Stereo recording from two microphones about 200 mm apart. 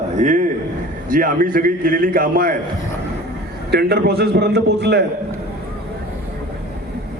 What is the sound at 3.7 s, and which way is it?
A man's voice, 55° right (ahead or behind).